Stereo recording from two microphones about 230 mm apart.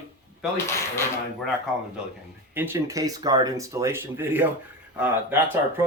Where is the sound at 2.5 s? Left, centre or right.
Centre.